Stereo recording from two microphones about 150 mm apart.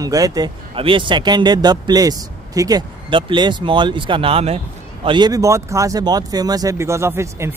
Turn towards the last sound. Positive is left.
turn(degrees=-15)  # may be behind; listen again after turning